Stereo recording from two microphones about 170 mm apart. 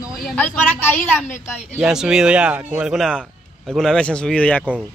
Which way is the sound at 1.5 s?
5° right (ahead or behind).